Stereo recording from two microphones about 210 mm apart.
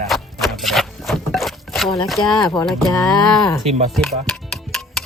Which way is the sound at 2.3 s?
20° left (ahead or behind).